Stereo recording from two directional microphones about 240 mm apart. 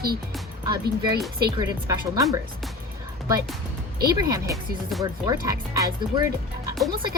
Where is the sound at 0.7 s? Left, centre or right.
Centre.